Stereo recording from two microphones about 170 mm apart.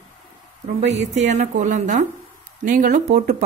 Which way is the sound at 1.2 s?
45° right (ahead or behind).